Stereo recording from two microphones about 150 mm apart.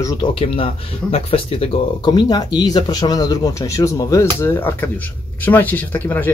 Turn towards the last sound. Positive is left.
turn(degrees=15)  # may be behind; listen again after turning